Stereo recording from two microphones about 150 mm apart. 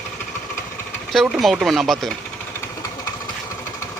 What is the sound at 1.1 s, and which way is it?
Speech, centre (ahead or behind).